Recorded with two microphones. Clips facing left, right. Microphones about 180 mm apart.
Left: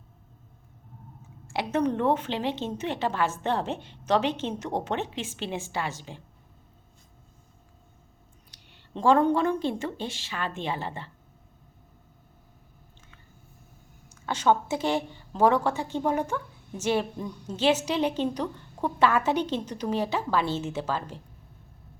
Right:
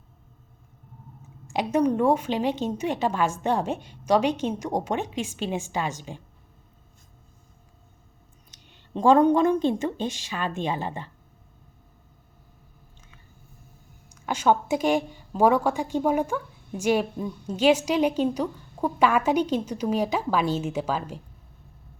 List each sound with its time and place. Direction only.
1.5 s a woman's voice: 15° right (ahead or behind)
8.4 s a woman's voice: 20° right (ahead or behind)
14.3 s a woman's voice: 10° right (ahead or behind)